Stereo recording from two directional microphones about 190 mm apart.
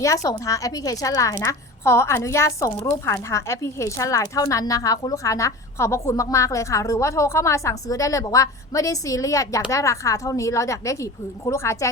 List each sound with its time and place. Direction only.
0.0 s a woman's voice: 15° left (ahead or behind)